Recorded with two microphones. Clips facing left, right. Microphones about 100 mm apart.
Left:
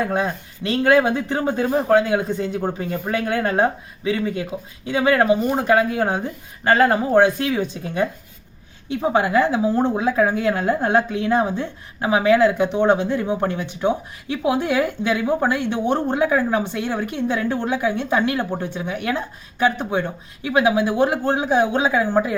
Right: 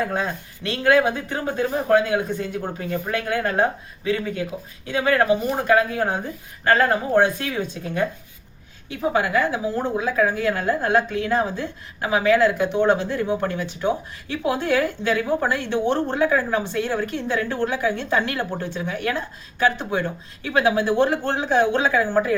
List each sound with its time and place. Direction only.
0.0 s a woman's voice: 20° left (ahead or behind)